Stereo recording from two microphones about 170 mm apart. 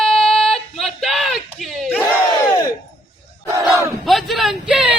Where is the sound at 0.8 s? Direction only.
Centre (ahead or behind).